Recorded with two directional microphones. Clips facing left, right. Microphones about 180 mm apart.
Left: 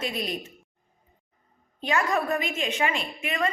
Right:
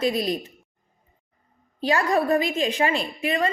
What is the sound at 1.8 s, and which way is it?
A woman's voice, 35° right (ahead or behind).